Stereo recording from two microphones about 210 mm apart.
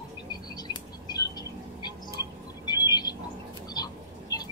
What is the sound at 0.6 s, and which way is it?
Bird, 20° left (ahead or behind).